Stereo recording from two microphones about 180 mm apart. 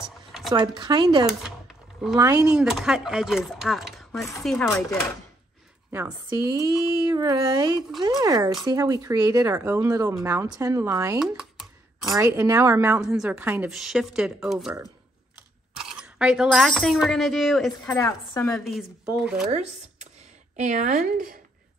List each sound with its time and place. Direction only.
0.5 s speech: 25° right (ahead or behind)
2.4 s a woman's voice: 5° right (ahead or behind)
5.9 s speech: 10° right (ahead or behind)
11.1 s a sound: 5° right (ahead or behind)
12.1 s a woman's voice: 15° right (ahead or behind); by 17.9 s centre (ahead or behind)
17.9 s a woman's voice: 15° left (ahead or behind)
18.5 s a woman's voice: centre (ahead or behind)
20.5 s a woman's voice: 40° right (ahead or behind)